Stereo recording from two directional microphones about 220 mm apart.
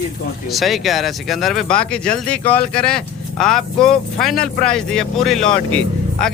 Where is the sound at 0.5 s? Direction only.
Centre (ahead or behind).